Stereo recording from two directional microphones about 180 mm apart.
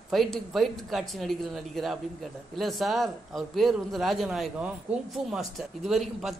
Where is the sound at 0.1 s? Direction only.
Centre (ahead or behind).